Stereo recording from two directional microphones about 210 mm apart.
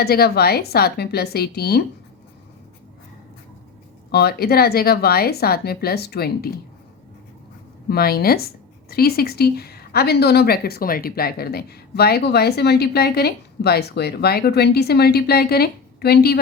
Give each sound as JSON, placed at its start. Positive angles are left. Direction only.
{"t": 0.0, "sound": "a woman's voice", "side_deg": 50}
{"t": 4.1, "sound": "a woman's voice", "side_deg": 50}
{"t": 7.9, "sound": "a woman's voice", "side_deg": 45}